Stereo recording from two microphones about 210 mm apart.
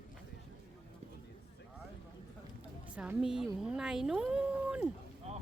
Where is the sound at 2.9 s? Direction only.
5° right (ahead or behind).